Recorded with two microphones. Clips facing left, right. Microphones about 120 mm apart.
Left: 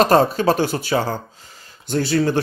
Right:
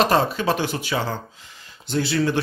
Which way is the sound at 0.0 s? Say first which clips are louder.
Left 5 dB; 40° left (ahead or behind).